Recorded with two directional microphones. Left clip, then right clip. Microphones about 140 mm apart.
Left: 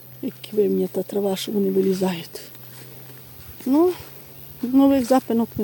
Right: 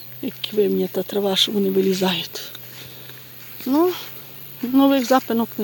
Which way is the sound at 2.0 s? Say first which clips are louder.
Right 4 dB; 15° left (ahead or behind).